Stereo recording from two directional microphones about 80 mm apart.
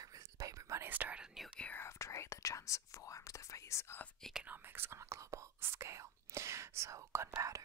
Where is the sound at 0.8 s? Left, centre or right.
Right.